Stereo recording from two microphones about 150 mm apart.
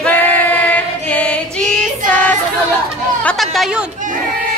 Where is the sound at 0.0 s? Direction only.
10° left (ahead or behind).